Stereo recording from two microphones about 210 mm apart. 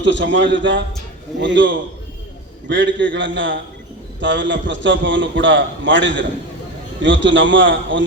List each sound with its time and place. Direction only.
0.0 s a man's voice: 60° right (ahead or behind)